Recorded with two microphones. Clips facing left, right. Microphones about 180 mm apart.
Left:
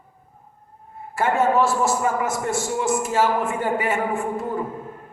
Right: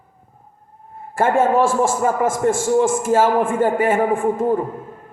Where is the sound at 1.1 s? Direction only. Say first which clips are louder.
Right 3 dB; 50° right (ahead or behind).